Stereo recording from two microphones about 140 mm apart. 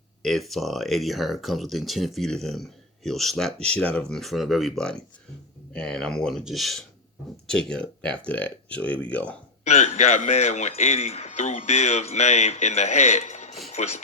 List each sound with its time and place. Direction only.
0.2 s speech: centre (ahead or behind)
9.6 s speech: 50° left (ahead or behind)